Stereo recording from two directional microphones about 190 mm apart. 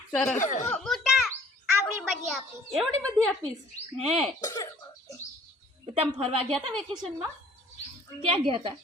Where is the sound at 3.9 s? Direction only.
35° right (ahead or behind).